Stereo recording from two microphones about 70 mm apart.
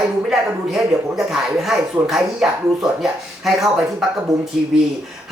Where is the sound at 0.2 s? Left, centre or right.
Centre.